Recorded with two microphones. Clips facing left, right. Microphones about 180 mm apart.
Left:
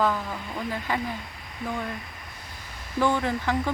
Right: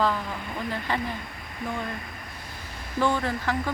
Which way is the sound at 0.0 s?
5° left (ahead or behind).